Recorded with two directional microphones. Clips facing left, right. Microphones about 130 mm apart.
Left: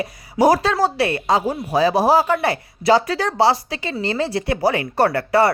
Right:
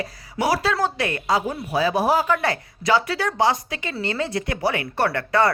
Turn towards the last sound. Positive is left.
turn(degrees=30)  # may be behind; listen again after turning